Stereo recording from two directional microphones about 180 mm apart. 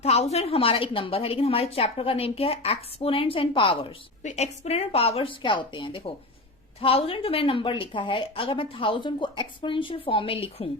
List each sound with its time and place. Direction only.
0.0 s a woman's voice: 35° left (ahead or behind)